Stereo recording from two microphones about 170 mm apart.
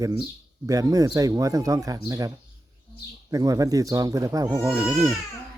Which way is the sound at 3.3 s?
20° right (ahead or behind).